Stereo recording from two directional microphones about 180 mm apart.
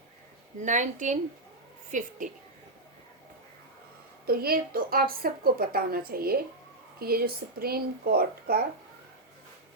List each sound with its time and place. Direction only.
0.6 s a woman's voice: 45° right (ahead or behind)
4.3 s a woman's voice: 55° right (ahead or behind)